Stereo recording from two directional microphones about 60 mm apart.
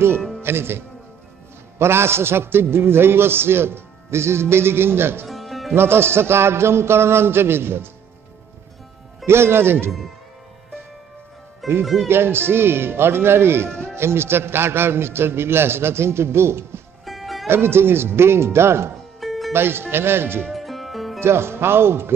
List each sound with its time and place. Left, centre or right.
0.4 s a man's voice: right
5.3 s music: centre
5.8 s a man's voice: right
9.2 s speech: right
11.8 s speech: centre
12.1 s a man's voice: right
17.0 s music: centre
17.5 s speech: right
19.1 s music: centre
19.5 s a man's voice: right
20.5 s music: centre
21.2 s speech: right